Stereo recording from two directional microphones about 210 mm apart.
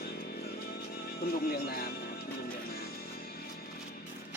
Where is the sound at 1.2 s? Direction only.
45° left (ahead or behind).